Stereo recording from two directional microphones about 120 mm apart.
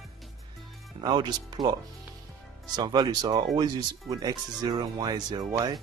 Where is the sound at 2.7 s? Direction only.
35° right (ahead or behind).